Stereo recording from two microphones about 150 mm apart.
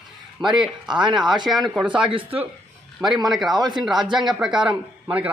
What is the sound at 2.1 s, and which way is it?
Speech, 40° right (ahead or behind).